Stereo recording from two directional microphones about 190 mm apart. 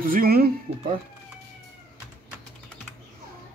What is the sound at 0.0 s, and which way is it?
Speech, 50° right (ahead or behind).